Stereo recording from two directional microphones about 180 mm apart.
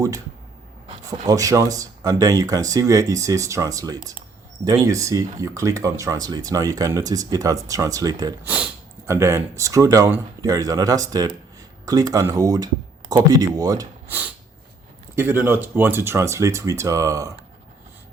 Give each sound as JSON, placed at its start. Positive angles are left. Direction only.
{"t": 1.3, "sound": "speech", "side_deg": -20}
{"t": 8.4, "sound": "speech", "side_deg": -10}